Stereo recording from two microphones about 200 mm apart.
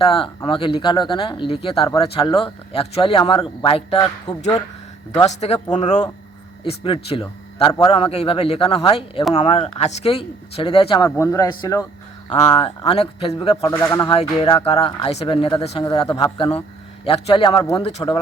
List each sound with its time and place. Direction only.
0.0 s speech: 25° left (ahead or behind)
12.3 s speech: 30° left (ahead or behind)
13.7 s speech: 15° left (ahead or behind)
14.1 s speech: 25° left (ahead or behind)